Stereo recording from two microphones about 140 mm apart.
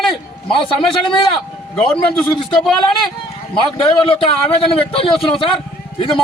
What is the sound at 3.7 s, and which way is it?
A man's voice, 35° left (ahead or behind).